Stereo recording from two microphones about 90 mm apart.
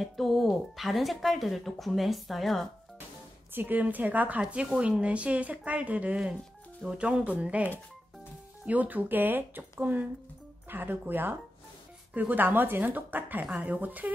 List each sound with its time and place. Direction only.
0.0 s speech: centre (ahead or behind)
3.5 s a woman's voice: 20° right (ahead or behind)